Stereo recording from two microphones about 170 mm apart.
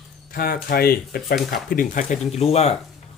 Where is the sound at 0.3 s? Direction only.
55° left (ahead or behind).